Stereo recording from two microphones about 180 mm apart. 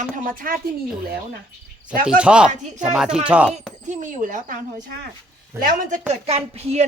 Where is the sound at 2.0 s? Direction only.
5° right (ahead or behind).